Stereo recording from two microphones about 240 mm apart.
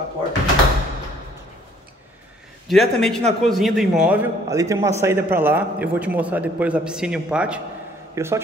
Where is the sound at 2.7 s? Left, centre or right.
Centre.